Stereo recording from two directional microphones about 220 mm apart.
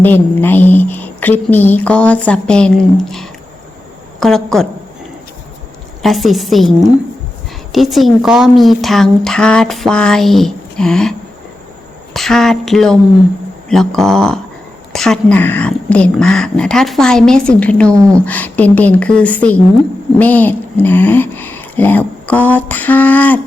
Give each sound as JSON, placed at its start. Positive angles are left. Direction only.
{"t": 0.0, "sound": "speech", "side_deg": 10}
{"t": 6.0, "sound": "speech", "side_deg": 0}
{"t": 12.1, "sound": "speech", "side_deg": 0}